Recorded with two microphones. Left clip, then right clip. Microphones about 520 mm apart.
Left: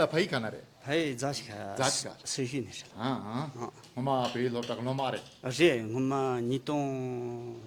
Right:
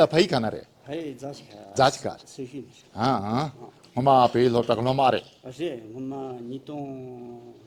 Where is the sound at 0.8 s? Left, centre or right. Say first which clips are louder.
Left 5 dB; left.